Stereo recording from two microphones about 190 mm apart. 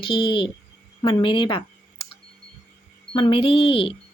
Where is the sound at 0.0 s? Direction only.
25° left (ahead or behind).